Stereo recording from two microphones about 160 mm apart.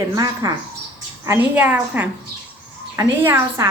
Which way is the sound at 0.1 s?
20° right (ahead or behind).